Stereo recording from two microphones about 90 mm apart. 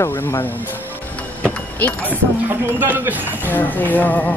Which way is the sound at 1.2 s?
15° left (ahead or behind).